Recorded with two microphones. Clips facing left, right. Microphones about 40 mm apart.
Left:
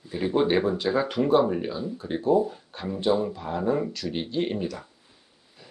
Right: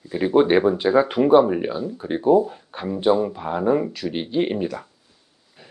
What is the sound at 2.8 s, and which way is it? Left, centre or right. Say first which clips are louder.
Speech: right 5 dB; centre.